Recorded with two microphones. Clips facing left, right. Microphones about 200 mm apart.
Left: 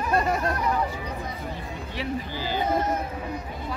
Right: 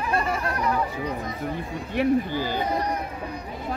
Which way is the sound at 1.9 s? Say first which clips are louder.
Right 10 dB; 50° right (ahead or behind).